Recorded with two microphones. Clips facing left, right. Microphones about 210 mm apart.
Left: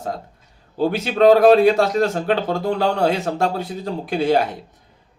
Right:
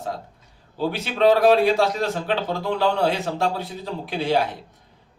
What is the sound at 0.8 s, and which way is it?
Speech, 45° left (ahead or behind).